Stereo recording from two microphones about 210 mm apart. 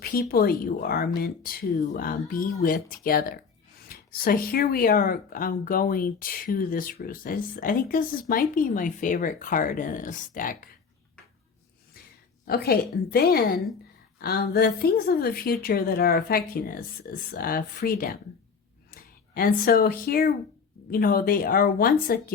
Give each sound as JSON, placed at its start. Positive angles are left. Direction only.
{"t": 0.0, "sound": "speech", "side_deg": 45}
{"t": 11.9, "sound": "a sound", "side_deg": 45}
{"t": 12.5, "sound": "speech", "side_deg": 45}